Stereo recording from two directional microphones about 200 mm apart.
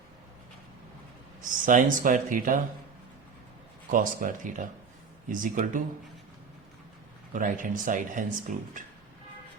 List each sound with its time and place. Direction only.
1.5 s speech: 40° right (ahead or behind)
3.9 s speech: 40° right (ahead or behind)
7.3 s speech: 40° right (ahead or behind)